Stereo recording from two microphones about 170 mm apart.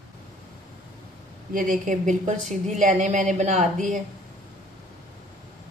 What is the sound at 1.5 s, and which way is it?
A woman's voice, 50° right (ahead or behind).